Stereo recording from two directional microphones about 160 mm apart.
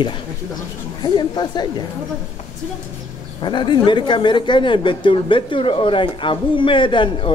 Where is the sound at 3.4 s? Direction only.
30° left (ahead or behind).